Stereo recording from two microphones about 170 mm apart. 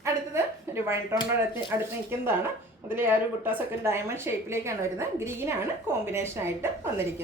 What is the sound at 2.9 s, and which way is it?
A woman's voice, 10° right (ahead or behind).